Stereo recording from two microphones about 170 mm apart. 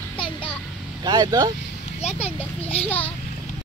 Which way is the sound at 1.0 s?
20° right (ahead or behind).